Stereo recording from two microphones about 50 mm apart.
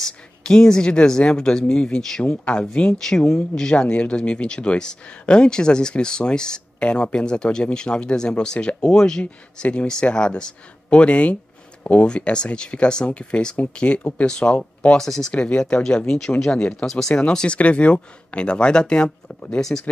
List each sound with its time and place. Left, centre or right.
0.0 s speech: centre
3.1 s speech: centre
3.7 s speech: left
9.2 s speech: left
15.0 s speech: centre
15.3 s speech: left